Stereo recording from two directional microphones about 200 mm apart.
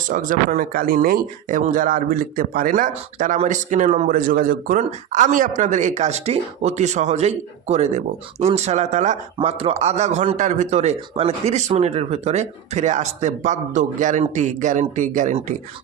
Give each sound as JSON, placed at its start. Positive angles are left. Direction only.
{"t": 0.1, "sound": "speech", "side_deg": -40}